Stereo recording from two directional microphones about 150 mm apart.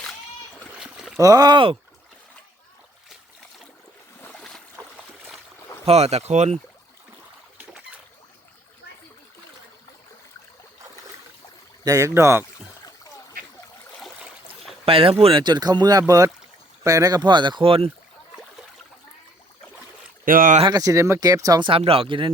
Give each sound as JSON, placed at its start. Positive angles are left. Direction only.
{"t": 0.6, "sound": "splash", "side_deg": -5}
{"t": 1.2, "sound": "speech", "side_deg": -25}
{"t": 4.2, "sound": "a sound", "side_deg": 5}
{"t": 4.8, "sound": "trickle", "side_deg": -5}
{"t": 5.8, "sound": "speech", "side_deg": -45}
{"t": 11.9, "sound": "speech", "side_deg": -20}
{"t": 14.0, "sound": "a sound", "side_deg": 0}
{"t": 14.8, "sound": "speech", "side_deg": -40}
{"t": 20.2, "sound": "speech", "side_deg": -65}
{"t": 20.6, "sound": "speech", "side_deg": -25}